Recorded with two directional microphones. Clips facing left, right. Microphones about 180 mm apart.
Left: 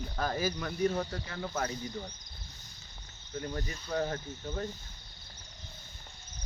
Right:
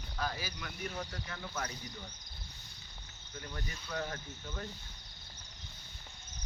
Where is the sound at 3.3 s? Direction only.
35° left (ahead or behind).